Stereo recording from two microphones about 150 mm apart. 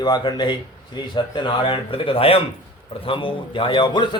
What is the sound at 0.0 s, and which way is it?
A man's voice, 30° left (ahead or behind).